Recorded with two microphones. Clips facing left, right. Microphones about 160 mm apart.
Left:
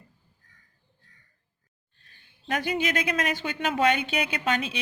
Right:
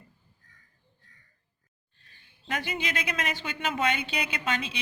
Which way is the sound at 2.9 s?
45° left (ahead or behind).